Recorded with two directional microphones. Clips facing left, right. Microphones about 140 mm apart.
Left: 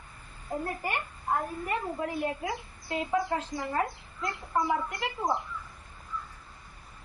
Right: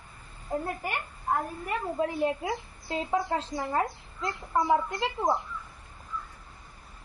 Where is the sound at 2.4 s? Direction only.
30° right (ahead or behind).